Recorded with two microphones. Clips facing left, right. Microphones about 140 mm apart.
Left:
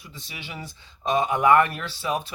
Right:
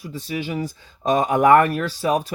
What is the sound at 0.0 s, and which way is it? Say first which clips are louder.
Speech: right 14 dB; 40° right (ahead or behind).